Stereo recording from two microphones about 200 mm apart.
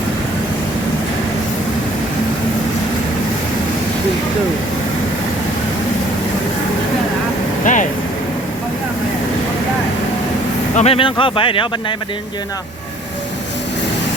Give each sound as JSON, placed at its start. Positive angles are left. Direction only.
{"t": 7.6, "sound": "vehicle", "side_deg": 40}
{"t": 10.8, "sound": "speech", "side_deg": 30}